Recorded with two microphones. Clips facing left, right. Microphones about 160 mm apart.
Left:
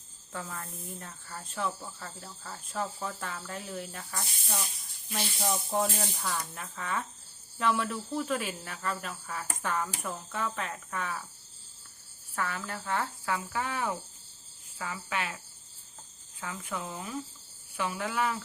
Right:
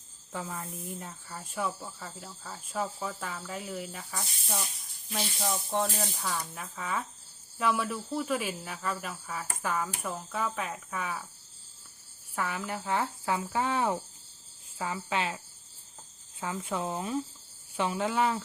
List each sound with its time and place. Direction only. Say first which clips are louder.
0.3 s speech: right 2 dB; 15° right (ahead or behind)
12.3 s speech: right 2 dB; 15° right (ahead or behind)
16.4 s speech: right 5 dB; 25° right (ahead or behind)